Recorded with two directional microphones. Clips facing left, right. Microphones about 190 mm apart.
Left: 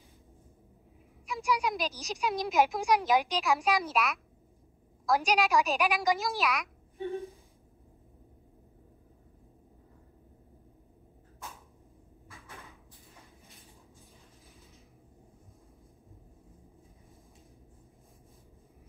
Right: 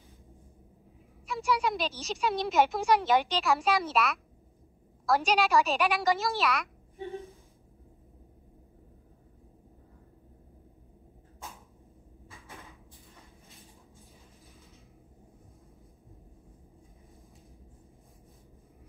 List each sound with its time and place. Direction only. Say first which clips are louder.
1.2 s a woman's voice: right 1 dB; centre (ahead or behind)